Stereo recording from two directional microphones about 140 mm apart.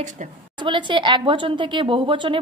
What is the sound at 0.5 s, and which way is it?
A woman's voice, 35° right (ahead or behind).